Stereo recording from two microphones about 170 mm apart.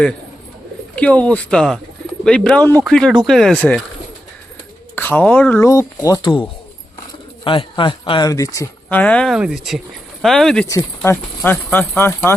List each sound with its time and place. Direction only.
0.9 s speech: 10° left (ahead or behind)
4.9 s speech: 10° left (ahead or behind)
7.4 s speech: 30° left (ahead or behind); by 10.7 s 5° left (ahead or behind)
10.7 s speech: 15° left (ahead or behind)